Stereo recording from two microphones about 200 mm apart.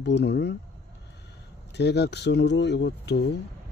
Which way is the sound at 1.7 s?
55° left (ahead or behind).